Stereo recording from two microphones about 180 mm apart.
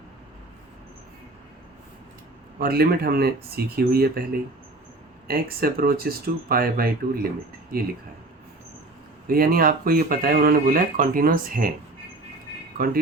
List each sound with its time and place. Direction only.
2.6 s speech: 60° right (ahead or behind)
9.2 s speech: 55° right (ahead or behind)
12.7 s speech: 55° right (ahead or behind)